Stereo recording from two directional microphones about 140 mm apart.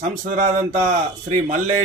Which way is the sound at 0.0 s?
65° right (ahead or behind).